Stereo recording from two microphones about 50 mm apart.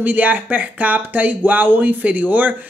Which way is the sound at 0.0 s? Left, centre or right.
Right.